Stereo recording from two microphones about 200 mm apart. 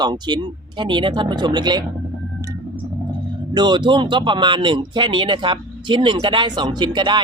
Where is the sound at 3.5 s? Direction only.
20° right (ahead or behind).